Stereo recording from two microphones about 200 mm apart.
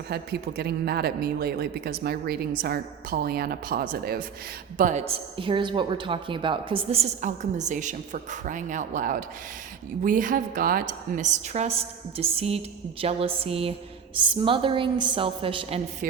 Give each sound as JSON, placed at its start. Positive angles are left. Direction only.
{"t": 0.1, "sound": "speech", "side_deg": -50}
{"t": 4.8, "sound": "a woman's voice", "side_deg": -35}